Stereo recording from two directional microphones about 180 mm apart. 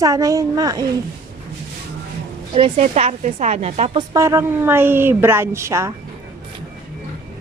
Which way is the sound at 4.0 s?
15° right (ahead or behind).